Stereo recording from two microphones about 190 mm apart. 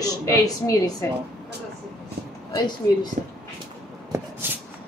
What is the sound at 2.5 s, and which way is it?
Speech, 20° left (ahead or behind).